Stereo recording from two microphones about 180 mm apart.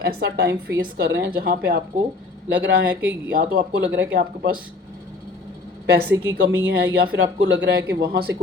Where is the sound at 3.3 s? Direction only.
55° right (ahead or behind).